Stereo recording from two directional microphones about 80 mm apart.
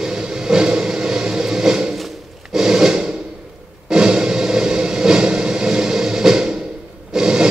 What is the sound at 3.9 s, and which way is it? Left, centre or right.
Music, centre.